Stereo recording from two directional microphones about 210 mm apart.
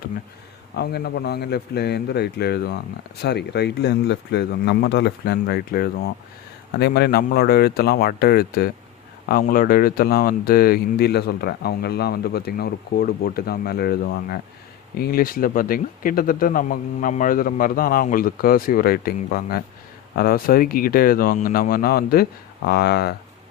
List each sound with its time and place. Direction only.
0.8 s speech: 50° left (ahead or behind)